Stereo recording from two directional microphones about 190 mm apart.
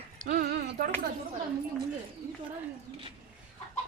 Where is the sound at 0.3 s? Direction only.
50° right (ahead or behind).